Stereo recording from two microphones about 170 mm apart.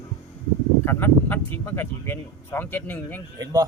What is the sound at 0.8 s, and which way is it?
Speech, 15° left (ahead or behind).